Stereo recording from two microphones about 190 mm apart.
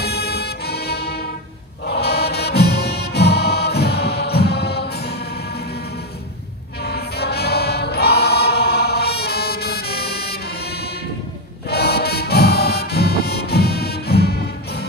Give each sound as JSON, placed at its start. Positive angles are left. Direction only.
{"t": 0.0, "sound": "music", "side_deg": 60}
{"t": 6.8, "sound": "choir", "side_deg": 55}
{"t": 11.7, "sound": "music", "side_deg": 55}